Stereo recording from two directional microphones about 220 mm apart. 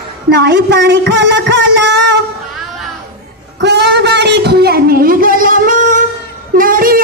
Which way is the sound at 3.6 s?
50° right (ahead or behind).